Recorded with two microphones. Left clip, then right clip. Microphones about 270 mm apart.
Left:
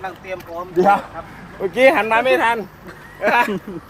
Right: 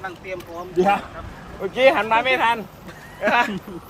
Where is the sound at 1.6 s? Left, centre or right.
Left.